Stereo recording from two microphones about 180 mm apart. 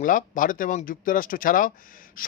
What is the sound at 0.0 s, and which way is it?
A man's voice, 45° left (ahead or behind).